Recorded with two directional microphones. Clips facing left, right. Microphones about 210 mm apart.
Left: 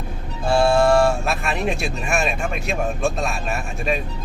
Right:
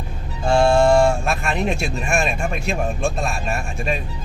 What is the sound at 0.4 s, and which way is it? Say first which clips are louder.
A man's voice: right 1 dB; 5° left (ahead or behind).